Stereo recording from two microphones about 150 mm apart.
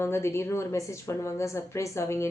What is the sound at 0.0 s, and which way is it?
Speech, 15° left (ahead or behind).